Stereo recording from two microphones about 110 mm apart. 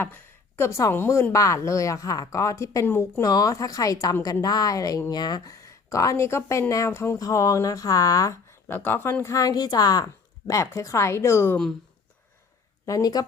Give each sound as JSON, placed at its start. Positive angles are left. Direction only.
{"t": 0.0, "sound": "speech", "side_deg": 20}
{"t": 3.2, "sound": "a woman's voice", "side_deg": 35}
{"t": 12.8, "sound": "speech", "side_deg": 35}